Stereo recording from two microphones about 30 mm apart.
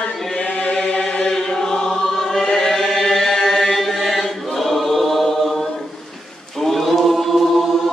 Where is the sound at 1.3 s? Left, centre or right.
Centre.